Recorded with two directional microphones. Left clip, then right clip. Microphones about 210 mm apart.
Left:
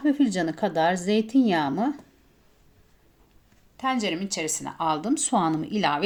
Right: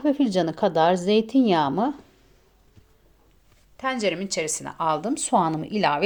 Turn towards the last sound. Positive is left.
turn(degrees=-15)  # may be behind; listen again after turning